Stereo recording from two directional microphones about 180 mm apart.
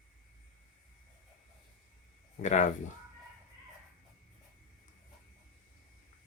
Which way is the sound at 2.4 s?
40° left (ahead or behind).